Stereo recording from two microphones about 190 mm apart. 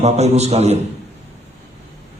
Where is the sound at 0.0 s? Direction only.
35° right (ahead or behind).